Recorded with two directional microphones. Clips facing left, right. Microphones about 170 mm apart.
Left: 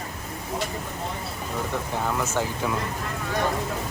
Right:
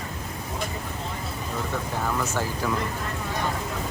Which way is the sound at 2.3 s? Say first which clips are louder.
Left 1 dB; 15° left (ahead or behind).